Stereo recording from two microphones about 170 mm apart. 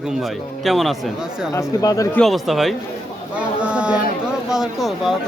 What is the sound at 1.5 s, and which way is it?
Speech, 20° left (ahead or behind).